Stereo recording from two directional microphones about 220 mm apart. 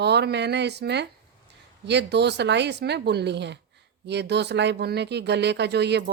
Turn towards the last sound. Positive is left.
turn(degrees=-50)  # may be behind; listen again after turning